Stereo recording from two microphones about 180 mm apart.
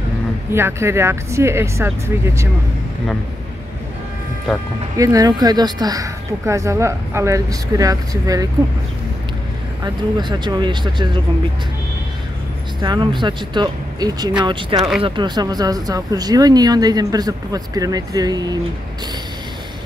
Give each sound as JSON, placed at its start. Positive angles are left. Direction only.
{"t": 0.5, "sound": "speech", "side_deg": -15}
{"t": 4.9, "sound": "speech", "side_deg": -20}
{"t": 9.8, "sound": "speech", "side_deg": -25}
{"t": 12.8, "sound": "speech", "side_deg": -25}